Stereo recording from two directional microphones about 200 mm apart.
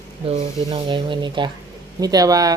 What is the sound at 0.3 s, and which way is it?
Speech, 30° right (ahead or behind).